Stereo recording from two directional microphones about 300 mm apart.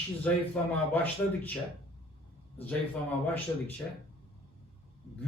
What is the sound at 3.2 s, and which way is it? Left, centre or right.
Speech, centre.